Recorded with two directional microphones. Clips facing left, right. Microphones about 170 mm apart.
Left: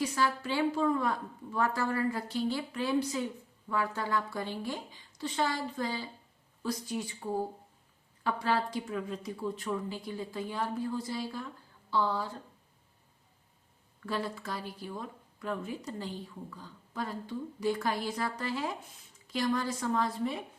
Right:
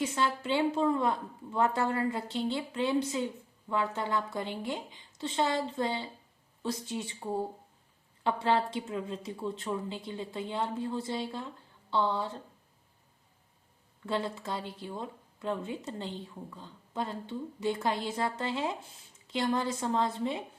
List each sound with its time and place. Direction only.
0.0 s speech: 25° right (ahead or behind)
14.0 s speech: 25° right (ahead or behind)